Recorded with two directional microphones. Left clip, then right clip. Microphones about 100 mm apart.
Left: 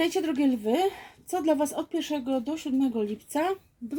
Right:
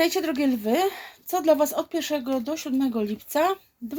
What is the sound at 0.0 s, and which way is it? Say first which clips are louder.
A woman's voice: right 3 dB; 30° left (ahead or behind).